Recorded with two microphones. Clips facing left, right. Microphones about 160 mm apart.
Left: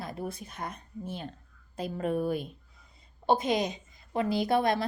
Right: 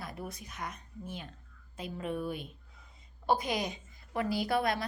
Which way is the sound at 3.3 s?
25° left (ahead or behind).